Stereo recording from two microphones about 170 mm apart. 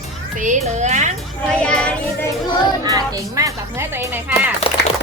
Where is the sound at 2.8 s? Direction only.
20° right (ahead or behind).